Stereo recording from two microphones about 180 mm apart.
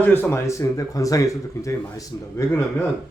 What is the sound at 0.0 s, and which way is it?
Speech, 10° left (ahead or behind).